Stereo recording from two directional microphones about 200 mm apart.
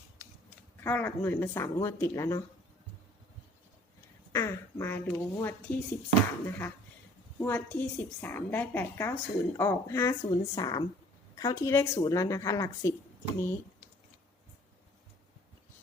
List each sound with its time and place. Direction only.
0.8 s a woman's voice: 10° left (ahead or behind)
4.3 s a woman's voice: 15° left (ahead or behind)